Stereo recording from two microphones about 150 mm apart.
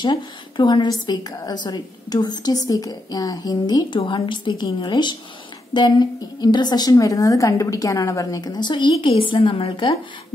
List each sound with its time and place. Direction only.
0.0 s a woman's voice: 30° left (ahead or behind)